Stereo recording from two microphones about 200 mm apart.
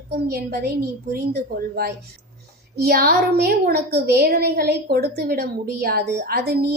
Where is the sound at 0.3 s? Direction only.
50° right (ahead or behind).